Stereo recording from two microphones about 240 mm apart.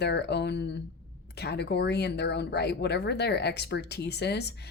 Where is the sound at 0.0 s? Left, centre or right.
Left.